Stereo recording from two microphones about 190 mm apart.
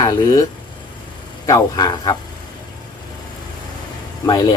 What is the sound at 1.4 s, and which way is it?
Speech, 20° left (ahead or behind).